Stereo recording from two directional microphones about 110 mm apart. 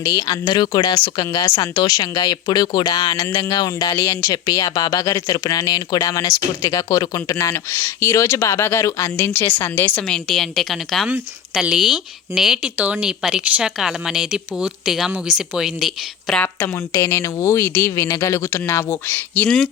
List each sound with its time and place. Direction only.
0.0 s speech: 35° left (ahead or behind)
1.7 s speech: 40° left (ahead or behind); by 10.0 s 20° left (ahead or behind)
10.1 s speech: centre (ahead or behind)
11.1 s speech: 10° right (ahead or behind)
16.9 s speech: 25° left (ahead or behind)